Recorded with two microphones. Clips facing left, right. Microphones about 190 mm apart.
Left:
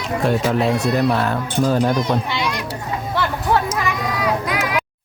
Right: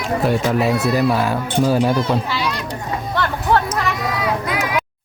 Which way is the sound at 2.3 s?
15° left (ahead or behind).